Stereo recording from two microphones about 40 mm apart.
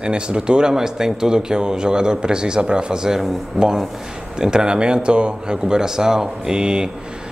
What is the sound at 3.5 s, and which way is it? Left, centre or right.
Speech, centre.